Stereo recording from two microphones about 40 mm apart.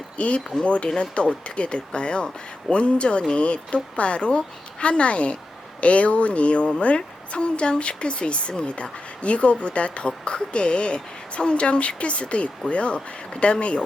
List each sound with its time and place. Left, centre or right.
0.2 s a woman's voice: left